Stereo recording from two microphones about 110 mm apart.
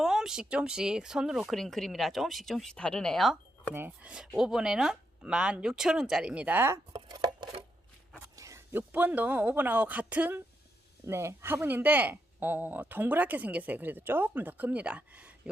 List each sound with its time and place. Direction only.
0.0 s speech: 5° right (ahead or behind)
3.8 s speech: 15° right (ahead or behind)
6.9 s a sound: 35° right (ahead or behind)
8.4 s a man's voice: 25° right (ahead or behind)
11.0 s speech: 25° right (ahead or behind)